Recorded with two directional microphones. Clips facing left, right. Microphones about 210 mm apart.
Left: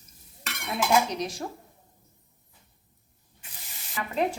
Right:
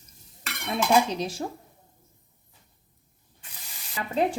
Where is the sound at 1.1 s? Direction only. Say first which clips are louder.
Right 2 dB; 30° right (ahead or behind).